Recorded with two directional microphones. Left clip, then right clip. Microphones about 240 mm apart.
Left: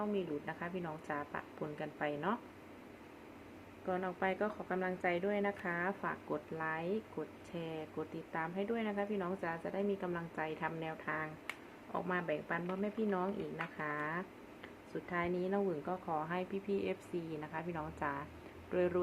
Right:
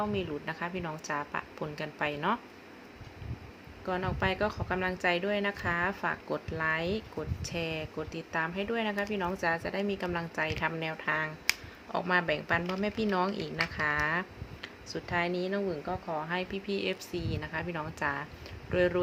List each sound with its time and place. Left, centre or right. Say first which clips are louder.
0.1 s speech: right 5 dB; centre
3.8 s a woman's voice: right 5 dB; centre